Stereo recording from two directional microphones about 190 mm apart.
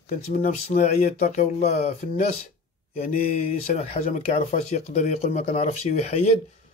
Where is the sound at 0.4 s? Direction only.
35° left (ahead or behind).